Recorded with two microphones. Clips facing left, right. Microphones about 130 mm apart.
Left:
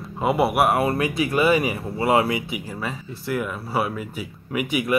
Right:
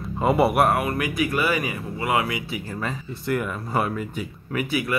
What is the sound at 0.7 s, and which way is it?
Speech, 30° left (ahead or behind).